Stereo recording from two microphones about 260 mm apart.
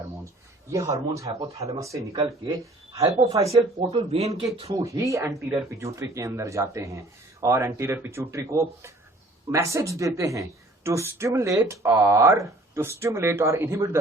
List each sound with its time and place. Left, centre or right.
0.7 s speech: centre
3.2 s speech: right